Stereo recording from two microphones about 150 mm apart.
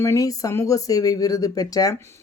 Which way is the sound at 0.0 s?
20° left (ahead or behind).